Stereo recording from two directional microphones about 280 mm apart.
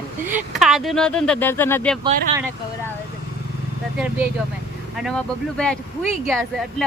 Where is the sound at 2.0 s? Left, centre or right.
Centre.